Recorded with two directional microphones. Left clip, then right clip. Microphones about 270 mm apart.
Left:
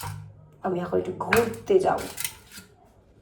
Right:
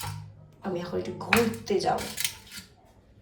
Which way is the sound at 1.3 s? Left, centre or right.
Centre.